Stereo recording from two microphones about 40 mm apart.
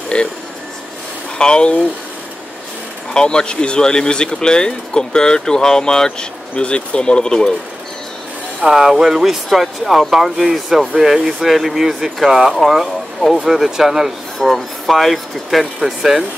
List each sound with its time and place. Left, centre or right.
0.1 s speech: left
1.4 s speech: left
3.1 s speech: left
6.5 s speech: left
8.6 s speech: centre
13.4 s speech: centre
14.4 s speech: centre
15.8 s speech: centre